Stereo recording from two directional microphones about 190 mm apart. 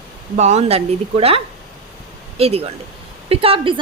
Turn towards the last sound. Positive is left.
turn(degrees=-25)  # may be behind; listen again after turning